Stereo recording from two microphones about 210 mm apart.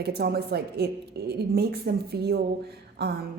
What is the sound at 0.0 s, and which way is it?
A woman's voice, 50° right (ahead or behind).